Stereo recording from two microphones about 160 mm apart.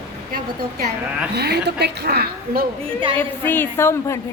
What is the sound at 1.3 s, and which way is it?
A woman's voice, 90° right.